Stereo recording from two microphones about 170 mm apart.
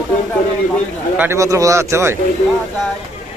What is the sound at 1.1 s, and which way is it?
A man's voice, 15° right (ahead or behind).